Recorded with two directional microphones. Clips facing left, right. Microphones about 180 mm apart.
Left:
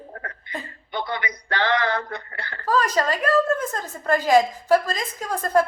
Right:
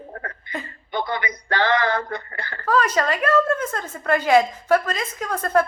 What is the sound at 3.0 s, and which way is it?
Speech, 35° left (ahead or behind).